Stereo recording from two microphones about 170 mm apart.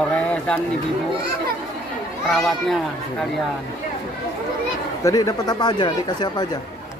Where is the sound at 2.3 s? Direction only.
Centre (ahead or behind).